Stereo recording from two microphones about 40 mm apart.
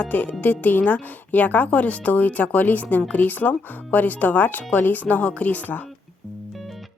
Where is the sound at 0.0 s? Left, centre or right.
Left.